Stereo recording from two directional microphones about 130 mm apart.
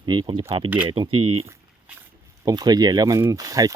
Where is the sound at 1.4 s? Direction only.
20° right (ahead or behind).